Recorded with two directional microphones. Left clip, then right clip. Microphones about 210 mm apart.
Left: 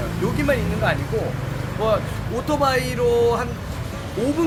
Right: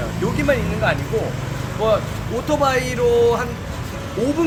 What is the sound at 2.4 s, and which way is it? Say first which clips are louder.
Speech: right 2 dB; 5° right (ahead or behind).